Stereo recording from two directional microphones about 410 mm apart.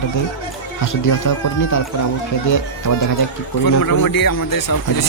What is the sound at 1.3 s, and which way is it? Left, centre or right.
Speech, left.